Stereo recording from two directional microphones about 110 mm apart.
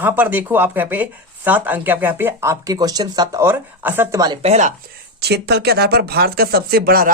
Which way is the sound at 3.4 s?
20° right (ahead or behind).